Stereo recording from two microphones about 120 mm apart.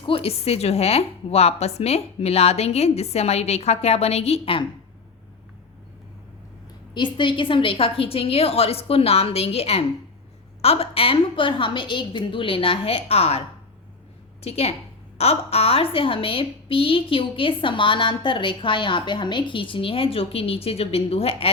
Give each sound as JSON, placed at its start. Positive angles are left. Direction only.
{"t": 0.0, "sound": "a woman's voice", "side_deg": 50}
{"t": 6.9, "sound": "a woman's voice", "side_deg": 40}
{"t": 14.4, "sound": "a woman's voice", "side_deg": 60}